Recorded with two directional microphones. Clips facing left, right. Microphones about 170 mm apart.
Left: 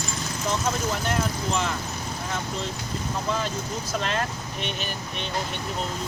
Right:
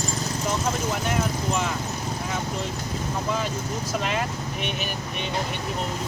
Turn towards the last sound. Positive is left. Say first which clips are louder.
# right 1 dB
turn(degrees=-10)  # may be behind; listen again after turning